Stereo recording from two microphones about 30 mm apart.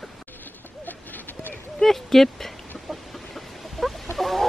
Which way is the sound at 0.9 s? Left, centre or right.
Left.